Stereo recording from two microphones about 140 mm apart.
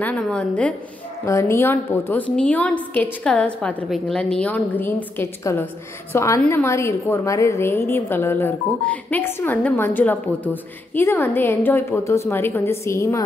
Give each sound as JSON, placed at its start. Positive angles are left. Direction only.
{"t": 0.0, "sound": "a woman's voice", "side_deg": 5}
{"t": 1.2, "sound": "a woman's voice", "side_deg": 20}